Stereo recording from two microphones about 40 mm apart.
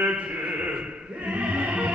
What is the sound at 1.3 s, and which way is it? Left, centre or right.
Music, right.